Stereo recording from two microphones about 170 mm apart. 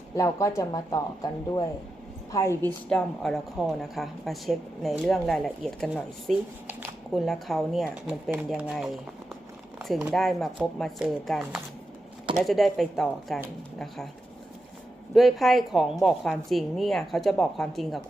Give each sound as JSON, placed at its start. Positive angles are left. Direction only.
{"t": 0.2, "sound": "speech", "side_deg": 20}
{"t": 9.7, "sound": "a sound", "side_deg": 0}
{"t": 10.0, "sound": "speech", "side_deg": 0}
{"t": 15.1, "sound": "speech", "side_deg": 0}